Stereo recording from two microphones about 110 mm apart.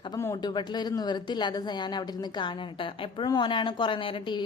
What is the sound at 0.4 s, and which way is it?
A woman's voice, 40° left (ahead or behind).